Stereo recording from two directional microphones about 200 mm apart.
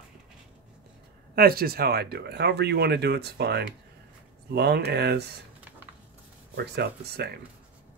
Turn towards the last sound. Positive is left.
turn(degrees=-55)  # may be behind; listen again after turning